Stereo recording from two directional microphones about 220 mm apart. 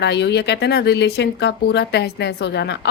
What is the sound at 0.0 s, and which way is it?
Speech, 50° left (ahead or behind).